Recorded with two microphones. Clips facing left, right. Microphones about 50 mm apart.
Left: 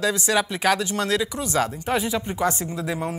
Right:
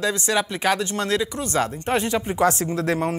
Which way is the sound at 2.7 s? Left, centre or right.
Right.